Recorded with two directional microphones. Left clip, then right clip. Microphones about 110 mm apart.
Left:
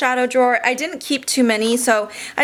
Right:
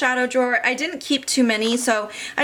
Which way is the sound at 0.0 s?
30° left (ahead or behind).